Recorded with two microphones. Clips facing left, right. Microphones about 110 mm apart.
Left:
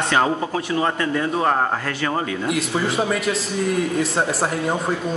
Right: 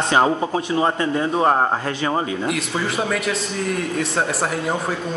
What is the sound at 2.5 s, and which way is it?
Speech, centre (ahead or behind).